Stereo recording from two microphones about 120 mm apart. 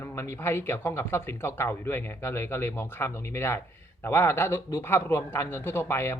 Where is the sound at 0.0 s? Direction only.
20° left (ahead or behind).